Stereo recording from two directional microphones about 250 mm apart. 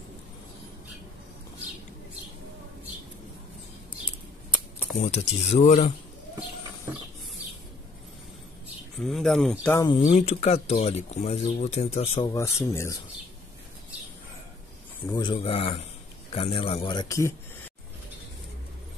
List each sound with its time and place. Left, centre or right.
5.0 s speech: left
9.0 s speech: centre
15.1 s speech: centre